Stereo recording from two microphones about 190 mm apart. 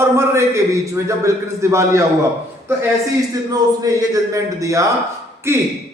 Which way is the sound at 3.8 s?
20° right (ahead or behind).